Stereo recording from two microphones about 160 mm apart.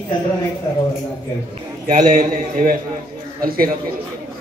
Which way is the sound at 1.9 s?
55° right (ahead or behind).